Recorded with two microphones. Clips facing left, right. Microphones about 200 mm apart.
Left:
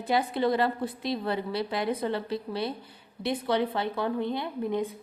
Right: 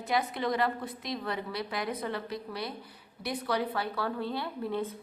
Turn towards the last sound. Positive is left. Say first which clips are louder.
# left 4 dB
turn(degrees=15)  # may be behind; listen again after turning